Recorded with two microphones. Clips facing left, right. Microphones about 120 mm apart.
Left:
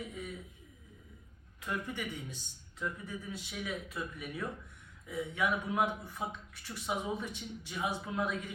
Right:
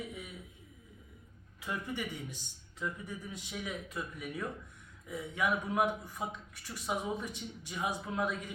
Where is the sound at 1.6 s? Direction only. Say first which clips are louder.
Even; 10° right (ahead or behind).